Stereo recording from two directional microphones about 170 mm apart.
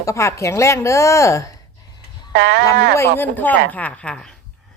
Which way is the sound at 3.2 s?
10° left (ahead or behind).